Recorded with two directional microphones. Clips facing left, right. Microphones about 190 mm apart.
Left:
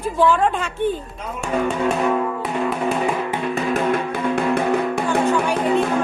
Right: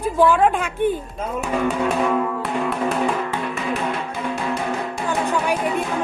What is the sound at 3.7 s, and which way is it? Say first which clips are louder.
Music: left 5 dB; 55° left (ahead or behind).